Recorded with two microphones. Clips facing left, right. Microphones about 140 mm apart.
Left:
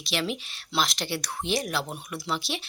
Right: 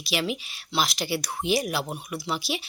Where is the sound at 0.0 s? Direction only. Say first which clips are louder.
Right 2 dB; 5° right (ahead or behind).